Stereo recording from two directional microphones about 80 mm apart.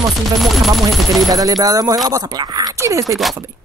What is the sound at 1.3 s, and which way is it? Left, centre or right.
Chopping, right.